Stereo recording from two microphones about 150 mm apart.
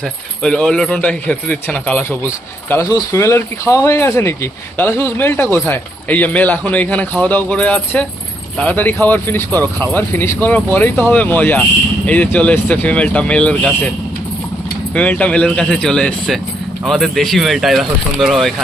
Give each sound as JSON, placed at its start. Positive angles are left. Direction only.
{"t": 0.4, "sound": "speech", "side_deg": 5}
{"t": 14.9, "sound": "speech", "side_deg": 10}